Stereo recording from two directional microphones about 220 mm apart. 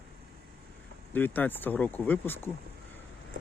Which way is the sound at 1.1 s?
10° left (ahead or behind).